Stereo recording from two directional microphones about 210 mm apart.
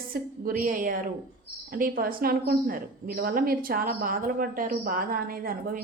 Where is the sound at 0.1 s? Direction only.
45° right (ahead or behind).